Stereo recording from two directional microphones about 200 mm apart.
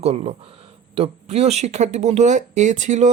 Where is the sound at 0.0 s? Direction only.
30° right (ahead or behind).